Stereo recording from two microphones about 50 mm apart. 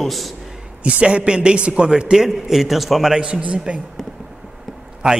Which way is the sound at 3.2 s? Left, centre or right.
Right.